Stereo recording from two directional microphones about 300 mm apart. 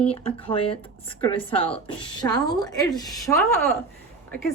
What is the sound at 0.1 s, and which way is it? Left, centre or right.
Speech, centre.